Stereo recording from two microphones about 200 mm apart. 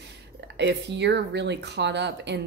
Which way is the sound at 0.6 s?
60° right (ahead or behind).